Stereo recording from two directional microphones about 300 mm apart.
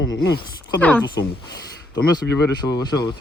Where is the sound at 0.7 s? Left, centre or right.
Centre.